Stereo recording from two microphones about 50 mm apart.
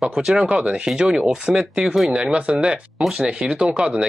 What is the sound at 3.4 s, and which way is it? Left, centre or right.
Speech, right.